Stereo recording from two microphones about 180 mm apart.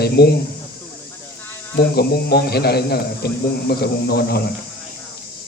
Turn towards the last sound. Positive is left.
turn(degrees=60)  # may be behind; listen again after turning